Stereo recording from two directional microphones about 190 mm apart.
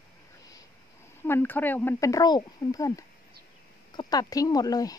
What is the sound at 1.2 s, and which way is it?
A woman's voice, 10° left (ahead or behind).